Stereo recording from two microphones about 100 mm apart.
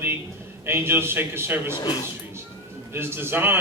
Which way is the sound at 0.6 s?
25° right (ahead or behind).